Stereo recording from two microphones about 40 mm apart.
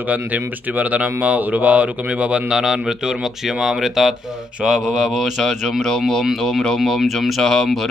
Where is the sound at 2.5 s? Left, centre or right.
Centre.